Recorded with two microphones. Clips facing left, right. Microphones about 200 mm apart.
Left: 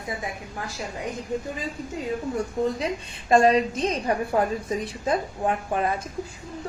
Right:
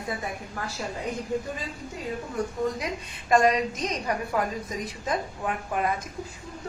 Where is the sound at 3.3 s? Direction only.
30° left (ahead or behind).